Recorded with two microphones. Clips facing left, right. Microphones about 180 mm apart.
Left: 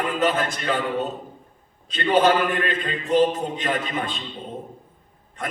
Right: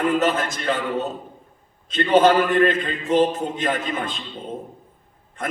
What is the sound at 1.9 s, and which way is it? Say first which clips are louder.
A man's voice: right 3 dB; 45° right (ahead or behind).